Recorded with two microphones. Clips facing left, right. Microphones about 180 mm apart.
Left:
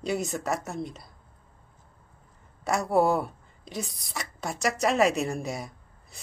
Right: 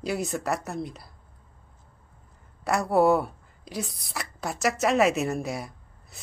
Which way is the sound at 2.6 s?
Centre (ahead or behind).